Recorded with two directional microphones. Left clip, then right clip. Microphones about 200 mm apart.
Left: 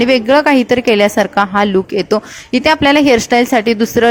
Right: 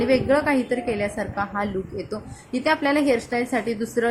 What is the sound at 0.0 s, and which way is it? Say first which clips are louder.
A woman's voice: left 10 dB; 45° left (ahead or behind).